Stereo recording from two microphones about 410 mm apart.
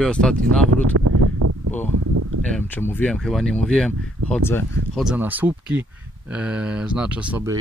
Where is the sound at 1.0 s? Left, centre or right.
Right.